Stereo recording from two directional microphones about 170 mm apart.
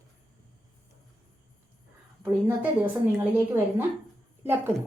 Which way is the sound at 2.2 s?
10° right (ahead or behind).